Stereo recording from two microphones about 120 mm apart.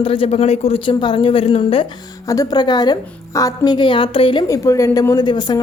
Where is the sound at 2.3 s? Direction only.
30° left (ahead or behind); by 4.4 s 45° left (ahead or behind).